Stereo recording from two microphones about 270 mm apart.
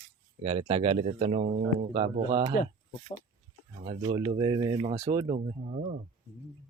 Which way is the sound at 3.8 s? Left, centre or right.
Right.